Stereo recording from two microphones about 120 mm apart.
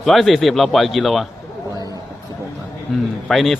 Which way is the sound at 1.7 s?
30° right (ahead or behind).